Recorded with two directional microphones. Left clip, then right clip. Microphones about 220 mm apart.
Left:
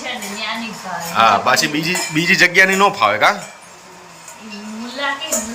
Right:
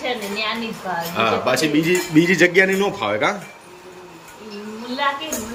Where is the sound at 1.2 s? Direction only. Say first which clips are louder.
Left 6 dB; 10° right (ahead or behind).